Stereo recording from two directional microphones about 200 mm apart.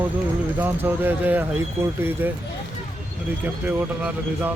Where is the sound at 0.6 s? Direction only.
10° right (ahead or behind).